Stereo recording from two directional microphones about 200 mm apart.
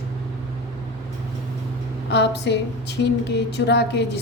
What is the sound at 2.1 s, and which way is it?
Speech, 60° left (ahead or behind).